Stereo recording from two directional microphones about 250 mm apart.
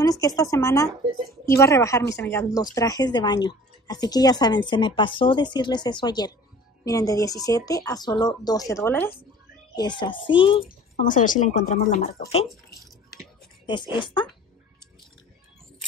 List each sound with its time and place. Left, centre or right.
0.0 s a woman's voice: centre
11.1 s speech: left
13.7 s speech: centre